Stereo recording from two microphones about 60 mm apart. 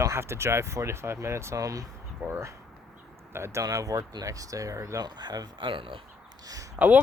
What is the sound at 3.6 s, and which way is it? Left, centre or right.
Speech, right.